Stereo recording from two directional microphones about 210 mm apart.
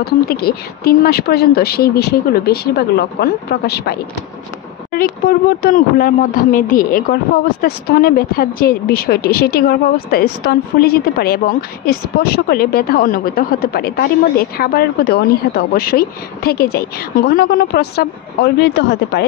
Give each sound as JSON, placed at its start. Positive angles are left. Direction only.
{"t": 0.0, "sound": "speech", "side_deg": 45}